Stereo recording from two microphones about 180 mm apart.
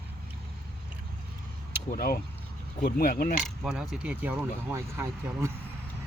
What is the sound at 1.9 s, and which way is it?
Speech, 55° left (ahead or behind).